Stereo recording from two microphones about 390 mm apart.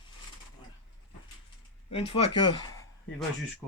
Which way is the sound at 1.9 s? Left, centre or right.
Centre.